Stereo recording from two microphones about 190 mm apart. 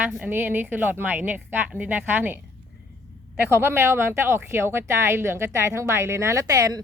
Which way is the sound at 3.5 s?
10° right (ahead or behind).